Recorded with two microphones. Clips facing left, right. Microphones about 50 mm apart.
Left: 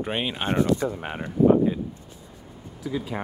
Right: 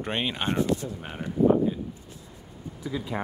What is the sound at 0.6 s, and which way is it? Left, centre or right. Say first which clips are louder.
Speech: left 4 dB; left.